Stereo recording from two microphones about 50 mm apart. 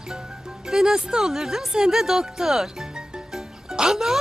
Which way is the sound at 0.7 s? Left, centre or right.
Centre.